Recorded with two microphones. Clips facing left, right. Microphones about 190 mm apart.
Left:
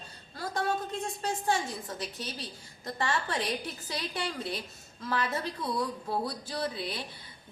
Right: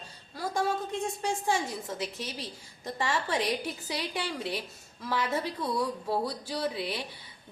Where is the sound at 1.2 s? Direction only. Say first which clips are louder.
Left 1 dB; 15° right (ahead or behind).